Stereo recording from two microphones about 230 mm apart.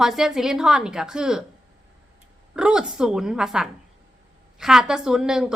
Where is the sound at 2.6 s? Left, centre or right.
Centre.